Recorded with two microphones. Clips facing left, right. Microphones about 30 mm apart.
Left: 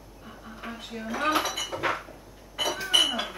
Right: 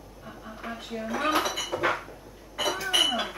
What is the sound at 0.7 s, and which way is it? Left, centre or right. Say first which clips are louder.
Dishes: right 1 dB; centre.